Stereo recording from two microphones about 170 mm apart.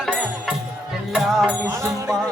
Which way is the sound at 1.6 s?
15° right (ahead or behind).